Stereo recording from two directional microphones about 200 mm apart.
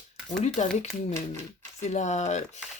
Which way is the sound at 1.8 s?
35° left (ahead or behind).